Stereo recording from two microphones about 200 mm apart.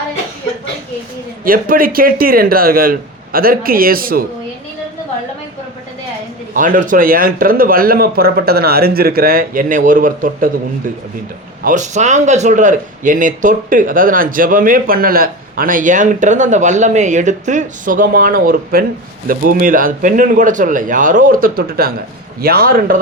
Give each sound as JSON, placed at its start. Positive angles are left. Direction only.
{"t": 1.5, "sound": "a man's voice", "side_deg": -45}
{"t": 6.5, "sound": "a man's voice", "side_deg": -40}
{"t": 11.6, "sound": "a man's voice", "side_deg": -40}